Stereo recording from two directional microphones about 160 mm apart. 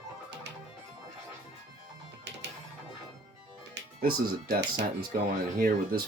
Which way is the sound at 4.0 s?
75° right (ahead or behind).